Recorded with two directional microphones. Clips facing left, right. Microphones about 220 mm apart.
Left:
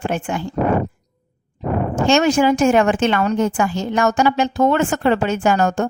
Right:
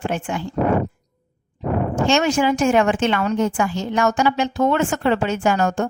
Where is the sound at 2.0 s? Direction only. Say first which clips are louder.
Left 4 dB; 45° left (ahead or behind).